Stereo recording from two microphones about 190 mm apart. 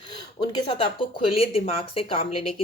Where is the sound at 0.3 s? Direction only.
25° left (ahead or behind).